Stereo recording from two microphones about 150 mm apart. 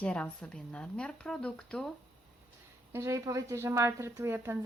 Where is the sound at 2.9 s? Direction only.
20° right (ahead or behind).